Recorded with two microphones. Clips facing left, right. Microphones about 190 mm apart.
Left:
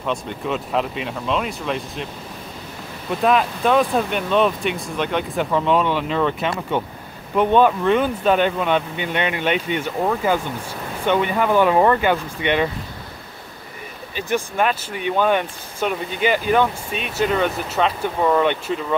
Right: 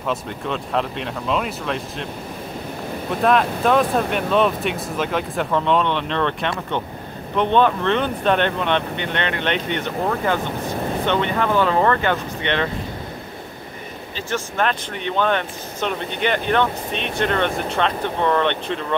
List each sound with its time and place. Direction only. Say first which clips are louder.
0.0 s speech: even; centre (ahead or behind)
3.1 s speech: even; centre (ahead or behind)
14.1 s speech: left 3 dB; 10° left (ahead or behind)